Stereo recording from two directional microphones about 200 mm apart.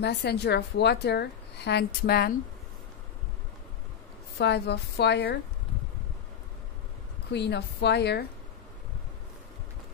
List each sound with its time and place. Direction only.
0.0 s a woman's voice: 55° left (ahead or behind)
4.4 s a woman's voice: 55° left (ahead or behind)
7.3 s a woman's voice: 55° left (ahead or behind)